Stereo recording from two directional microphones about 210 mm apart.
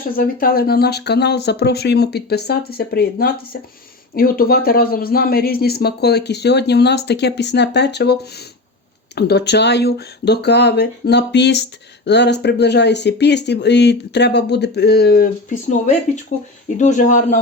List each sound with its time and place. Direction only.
0.2 s speech: 45° left (ahead or behind)